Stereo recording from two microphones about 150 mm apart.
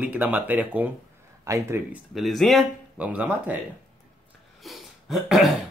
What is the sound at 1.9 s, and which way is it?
Speech, centre (ahead or behind).